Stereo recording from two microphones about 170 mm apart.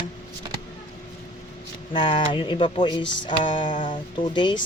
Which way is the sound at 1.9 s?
30° left (ahead or behind).